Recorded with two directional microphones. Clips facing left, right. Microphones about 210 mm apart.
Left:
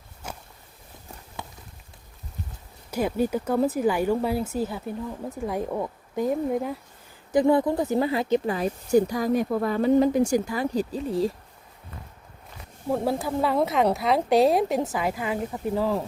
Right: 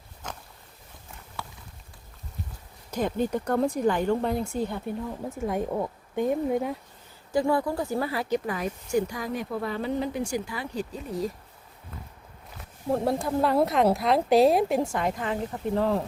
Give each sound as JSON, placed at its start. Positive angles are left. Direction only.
{"t": 0.2, "sound": "a sound", "side_deg": 10}
{"t": 1.4, "sound": "clip-clop", "side_deg": 20}
{"t": 2.9, "sound": "speech", "side_deg": 10}
{"t": 7.3, "sound": "speech", "side_deg": 20}
{"t": 12.9, "sound": "speech", "side_deg": 0}